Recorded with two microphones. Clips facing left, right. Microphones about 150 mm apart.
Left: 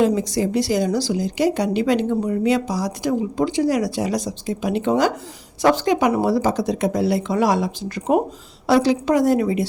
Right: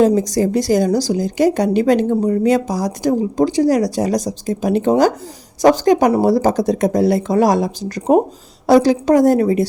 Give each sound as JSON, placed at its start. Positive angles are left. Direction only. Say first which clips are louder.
{"t": 0.0, "sound": "a woman's voice", "louder": "right 5 dB", "side_deg": -40}